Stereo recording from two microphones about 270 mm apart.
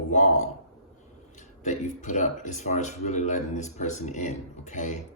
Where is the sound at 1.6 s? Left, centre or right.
Left.